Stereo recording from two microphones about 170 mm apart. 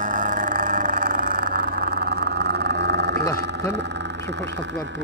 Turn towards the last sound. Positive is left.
turn(degrees=-90)